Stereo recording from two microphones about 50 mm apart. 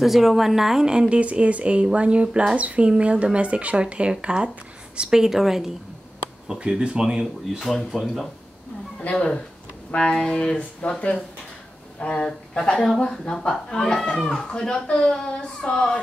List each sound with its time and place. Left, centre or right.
0.0 s speech: centre; by 2.2 s right
2.2 s speech: centre
2.5 s speech: right
7.6 s a woman's voice: centre
9.1 s a woman's voice: left